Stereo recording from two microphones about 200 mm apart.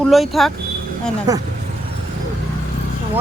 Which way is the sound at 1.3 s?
15° right (ahead or behind).